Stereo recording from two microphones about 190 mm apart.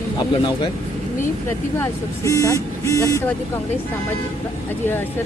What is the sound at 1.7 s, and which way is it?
Speech, 15° left (ahead or behind).